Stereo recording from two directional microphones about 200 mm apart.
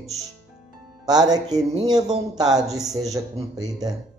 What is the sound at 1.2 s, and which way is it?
Speech, 20° right (ahead or behind).